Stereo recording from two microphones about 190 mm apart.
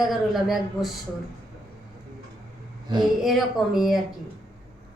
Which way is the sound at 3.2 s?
Centre (ahead or behind).